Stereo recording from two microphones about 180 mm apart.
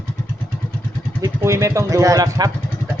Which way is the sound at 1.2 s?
15° right (ahead or behind).